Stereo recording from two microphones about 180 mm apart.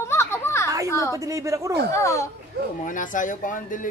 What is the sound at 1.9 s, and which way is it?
Speech, 15° left (ahead or behind).